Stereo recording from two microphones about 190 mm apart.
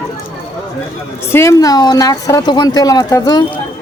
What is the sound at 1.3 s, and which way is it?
Speech, 15° left (ahead or behind).